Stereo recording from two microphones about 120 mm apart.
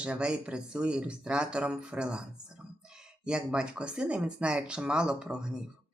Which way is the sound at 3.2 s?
5° right (ahead or behind).